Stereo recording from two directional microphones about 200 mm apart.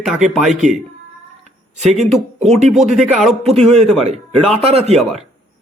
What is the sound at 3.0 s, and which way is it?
Speech, centre (ahead or behind).